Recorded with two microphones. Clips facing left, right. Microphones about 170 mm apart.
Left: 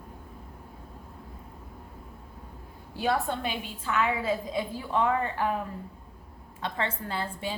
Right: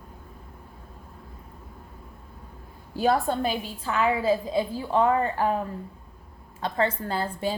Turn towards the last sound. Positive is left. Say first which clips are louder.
# right 5 dB
turn(degrees=-40)  # may be behind; listen again after turning